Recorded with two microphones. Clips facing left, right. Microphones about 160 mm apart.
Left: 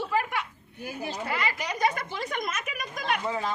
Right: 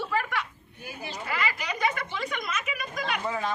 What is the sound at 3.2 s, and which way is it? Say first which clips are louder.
Speech: even; 5° left (ahead or behind).